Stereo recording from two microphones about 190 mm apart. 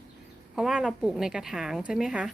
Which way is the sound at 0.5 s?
5° right (ahead or behind).